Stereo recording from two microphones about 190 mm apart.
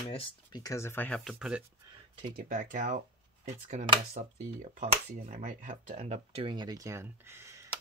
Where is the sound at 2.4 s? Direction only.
40° right (ahead or behind).